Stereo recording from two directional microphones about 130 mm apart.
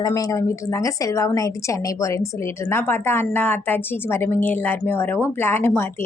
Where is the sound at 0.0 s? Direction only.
25° left (ahead or behind).